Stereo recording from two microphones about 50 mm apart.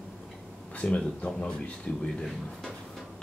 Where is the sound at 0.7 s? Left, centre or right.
Left.